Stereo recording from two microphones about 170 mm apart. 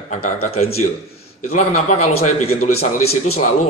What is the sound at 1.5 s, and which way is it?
A man's voice, 45° left (ahead or behind).